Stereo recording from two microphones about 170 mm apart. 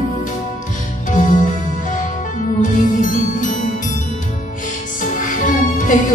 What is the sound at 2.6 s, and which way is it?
Music, 50° left (ahead or behind).